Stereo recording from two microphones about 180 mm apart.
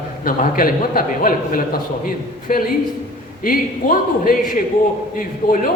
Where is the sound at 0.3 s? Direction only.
50° left (ahead or behind).